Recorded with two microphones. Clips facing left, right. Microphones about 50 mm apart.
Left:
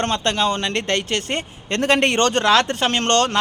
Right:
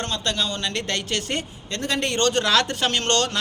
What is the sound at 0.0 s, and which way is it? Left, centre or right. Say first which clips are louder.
A man's voice: left 6 dB; left.